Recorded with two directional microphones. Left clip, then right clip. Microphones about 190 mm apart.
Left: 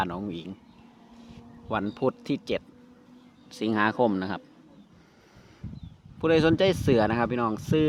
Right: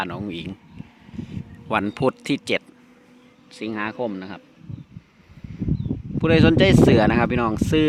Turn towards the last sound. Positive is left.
turn(degrees=-20)  # may be behind; listen again after turning